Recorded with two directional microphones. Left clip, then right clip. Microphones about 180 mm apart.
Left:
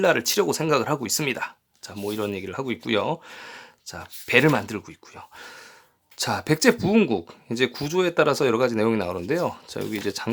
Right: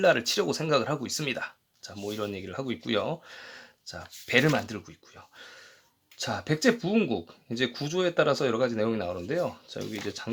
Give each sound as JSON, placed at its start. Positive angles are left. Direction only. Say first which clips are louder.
{"t": 0.0, "sound": "speech", "louder": "left 3 dB", "side_deg": 15}